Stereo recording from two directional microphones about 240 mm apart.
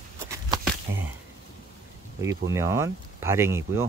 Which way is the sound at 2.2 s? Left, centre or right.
Centre.